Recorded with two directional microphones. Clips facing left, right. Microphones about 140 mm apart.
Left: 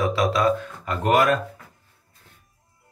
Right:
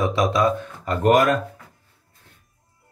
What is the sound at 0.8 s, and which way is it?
Speech, 45° right (ahead or behind).